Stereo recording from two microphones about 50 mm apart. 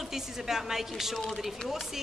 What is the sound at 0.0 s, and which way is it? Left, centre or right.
A woman's voice, centre.